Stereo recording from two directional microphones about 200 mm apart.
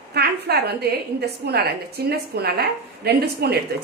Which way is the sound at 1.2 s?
55° right (ahead or behind).